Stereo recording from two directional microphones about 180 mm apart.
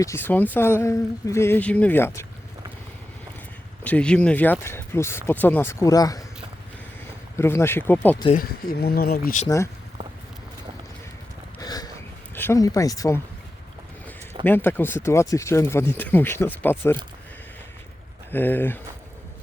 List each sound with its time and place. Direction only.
0.0 s speech: 15° left (ahead or behind)
3.8 s speech: 5° left (ahead or behind)
7.3 s speech: 15° left (ahead or behind)
8.4 s speech: 55° left (ahead or behind)
11.6 s a sound: 20° left (ahead or behind)
12.3 s speech: 15° left (ahead or behind)
14.4 s speech: 10° left (ahead or behind)
18.3 s speech: 10° left (ahead or behind)